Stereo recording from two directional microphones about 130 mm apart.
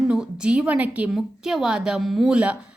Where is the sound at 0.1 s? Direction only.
5° right (ahead or behind).